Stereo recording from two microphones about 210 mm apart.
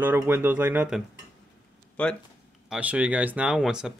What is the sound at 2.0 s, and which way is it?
Speech, 5° left (ahead or behind).